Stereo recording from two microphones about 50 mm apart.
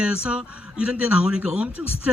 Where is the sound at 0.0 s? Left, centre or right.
Right.